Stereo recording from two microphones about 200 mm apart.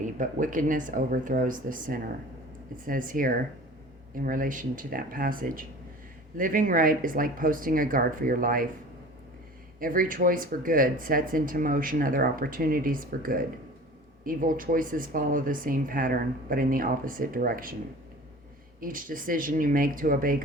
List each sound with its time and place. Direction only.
0.0 s speech: 40° right (ahead or behind)
9.8 s speech: 45° right (ahead or behind)
18.8 s speech: 45° right (ahead or behind)